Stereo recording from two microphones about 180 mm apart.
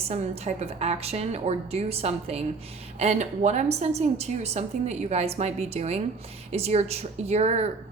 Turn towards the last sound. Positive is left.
turn(degrees=-35)  # may be behind; listen again after turning